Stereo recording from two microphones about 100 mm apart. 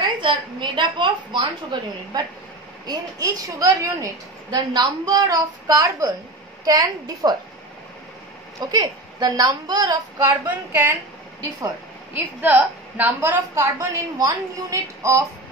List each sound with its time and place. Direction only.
0.2 s a woman's voice: 50° right (ahead or behind)
2.9 s a woman's voice: 35° right (ahead or behind)
8.5 s a woman's voice: 45° right (ahead or behind)
10.7 s a woman's voice: 20° right (ahead or behind)
12.1 s a woman's voice: 15° right (ahead or behind)